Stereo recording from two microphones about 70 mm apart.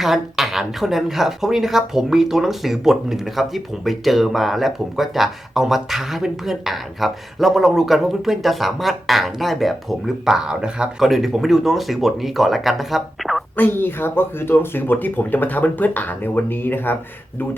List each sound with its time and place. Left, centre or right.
0.0 s speech: centre
13.6 s speech: left